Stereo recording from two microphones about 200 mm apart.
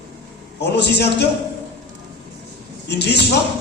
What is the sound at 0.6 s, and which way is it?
Speech, 55° left (ahead or behind).